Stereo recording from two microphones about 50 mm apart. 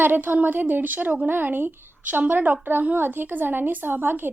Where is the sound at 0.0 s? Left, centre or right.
Right.